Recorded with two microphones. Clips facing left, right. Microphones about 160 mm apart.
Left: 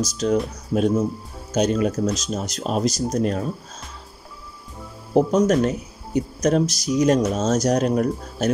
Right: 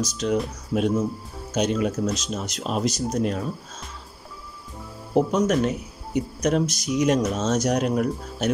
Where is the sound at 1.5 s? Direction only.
40° left (ahead or behind).